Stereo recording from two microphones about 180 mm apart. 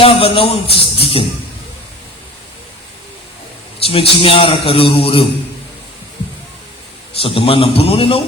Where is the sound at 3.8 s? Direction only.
30° left (ahead or behind).